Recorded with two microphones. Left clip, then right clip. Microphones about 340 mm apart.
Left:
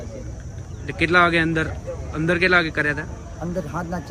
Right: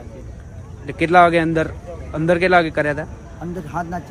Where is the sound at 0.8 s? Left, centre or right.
Centre.